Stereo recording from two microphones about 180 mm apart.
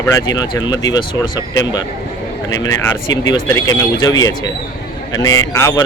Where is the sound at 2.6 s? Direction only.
20° left (ahead or behind).